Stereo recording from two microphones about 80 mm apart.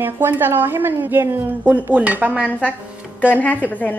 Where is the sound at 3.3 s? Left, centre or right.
Left.